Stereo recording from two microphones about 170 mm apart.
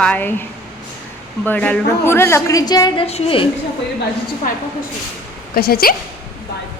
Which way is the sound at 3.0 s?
35° left (ahead or behind).